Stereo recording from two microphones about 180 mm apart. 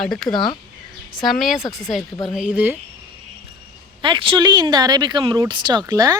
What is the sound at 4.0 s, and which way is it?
Speech, 30° right (ahead or behind).